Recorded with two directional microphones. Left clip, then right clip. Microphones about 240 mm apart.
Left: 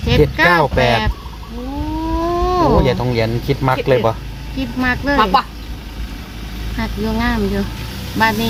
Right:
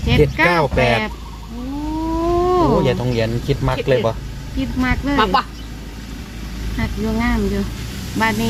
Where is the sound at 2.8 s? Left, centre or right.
Centre.